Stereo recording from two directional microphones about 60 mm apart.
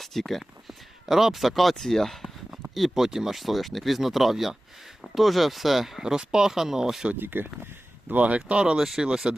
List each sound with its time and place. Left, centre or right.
0.0 s speech: centre
7.2 s speech: right
8.4 s speech: centre
8.8 s speech: centre
9.2 s speech: centre